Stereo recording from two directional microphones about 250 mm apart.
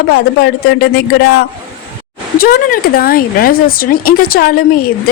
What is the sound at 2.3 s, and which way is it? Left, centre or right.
Speech, left.